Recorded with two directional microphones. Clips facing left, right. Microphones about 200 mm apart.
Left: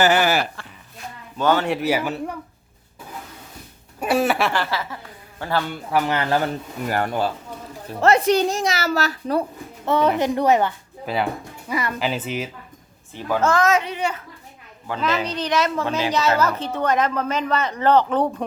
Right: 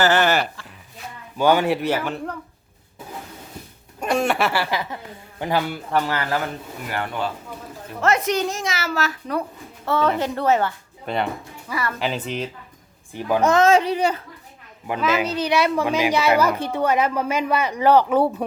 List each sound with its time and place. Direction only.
0.0 s a man's voice: 10° left (ahead or behind)
1.4 s a woman's voice: 10° right (ahead or behind)
1.7 s a man's voice: 5° left (ahead or behind)
4.0 s speech: 5° left (ahead or behind)
4.6 s a woman's voice: 15° right (ahead or behind)
6.1 s a man's voice: 25° left (ahead or behind)
6.8 s a woman's voice: 40° left (ahead or behind)
9.8 s a man's voice: 20° left (ahead or behind)
11.0 s speech: 5° left (ahead or behind)
11.7 s a man's voice: 20° left (ahead or behind)
11.9 s speech: centre (ahead or behind)
13.1 s a child's voice: 15° right (ahead or behind); by 14.2 s 35° right (ahead or behind)
15.0 s a woman's voice: 5° right (ahead or behind)